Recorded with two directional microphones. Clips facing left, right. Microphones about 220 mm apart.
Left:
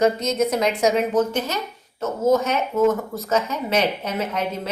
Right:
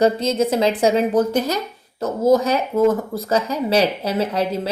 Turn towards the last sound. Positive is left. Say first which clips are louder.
# right 5 dB
turn(degrees=-35)  # may be behind; listen again after turning